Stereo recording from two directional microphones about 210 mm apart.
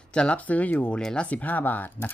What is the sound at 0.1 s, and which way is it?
Speech, 5° left (ahead or behind).